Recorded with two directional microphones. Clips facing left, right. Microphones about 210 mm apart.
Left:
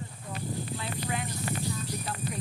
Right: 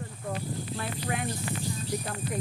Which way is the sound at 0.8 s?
55° right (ahead or behind).